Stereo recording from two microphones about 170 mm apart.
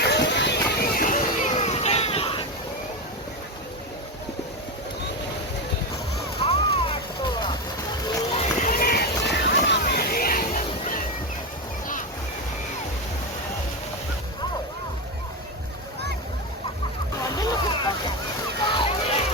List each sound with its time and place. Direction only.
0.0 s a sound: 85° left; by 2.4 s 35° left (ahead or behind)
6.4 s vehicle: 35° left (ahead or behind)
8.4 s run: 50° left (ahead or behind)
17.2 s boat: 20° left (ahead or behind)
18.6 s water: 30° left (ahead or behind)